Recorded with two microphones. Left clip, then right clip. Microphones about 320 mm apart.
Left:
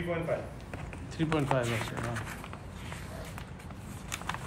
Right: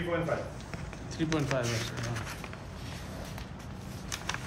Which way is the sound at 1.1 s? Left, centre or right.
Left.